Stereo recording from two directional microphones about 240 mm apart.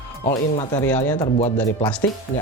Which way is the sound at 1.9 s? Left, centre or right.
Centre.